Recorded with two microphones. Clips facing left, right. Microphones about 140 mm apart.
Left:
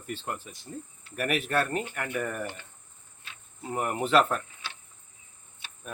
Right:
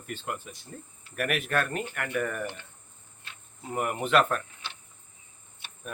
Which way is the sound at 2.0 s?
Centre (ahead or behind).